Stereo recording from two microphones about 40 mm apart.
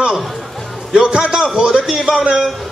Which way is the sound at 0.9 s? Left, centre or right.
Centre.